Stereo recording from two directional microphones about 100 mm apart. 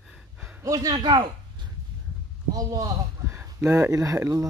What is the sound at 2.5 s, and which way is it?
Speech, 35° right (ahead or behind).